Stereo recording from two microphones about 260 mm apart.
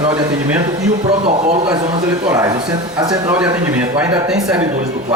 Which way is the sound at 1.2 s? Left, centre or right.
Right.